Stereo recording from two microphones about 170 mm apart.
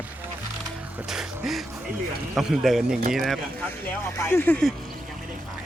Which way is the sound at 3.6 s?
15° left (ahead or behind).